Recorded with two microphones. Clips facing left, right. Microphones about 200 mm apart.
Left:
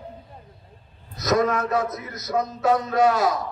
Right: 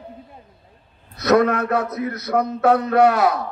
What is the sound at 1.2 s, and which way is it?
Mantra, 60° right (ahead or behind).